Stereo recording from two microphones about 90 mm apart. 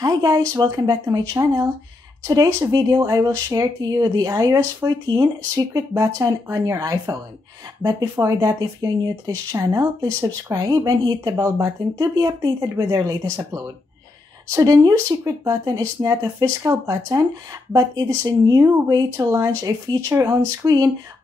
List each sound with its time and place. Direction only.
0.0 s speech: 45° right (ahead or behind)
14.5 s speech: 40° right (ahead or behind)